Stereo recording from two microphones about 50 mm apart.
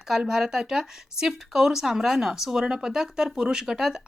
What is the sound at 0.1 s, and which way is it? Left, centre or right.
A woman's voice, centre.